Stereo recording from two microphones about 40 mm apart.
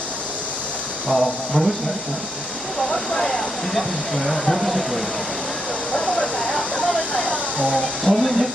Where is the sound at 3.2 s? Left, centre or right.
Centre.